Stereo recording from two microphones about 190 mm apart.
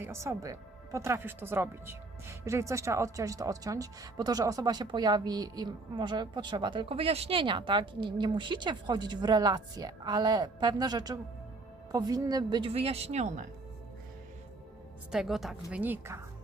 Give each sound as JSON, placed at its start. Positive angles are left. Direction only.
{"t": 0.0, "sound": "speech", "side_deg": -15}
{"t": 15.1, "sound": "a woman's voice", "side_deg": 0}